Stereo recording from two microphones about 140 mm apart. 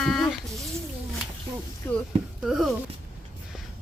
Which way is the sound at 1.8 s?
15° left (ahead or behind).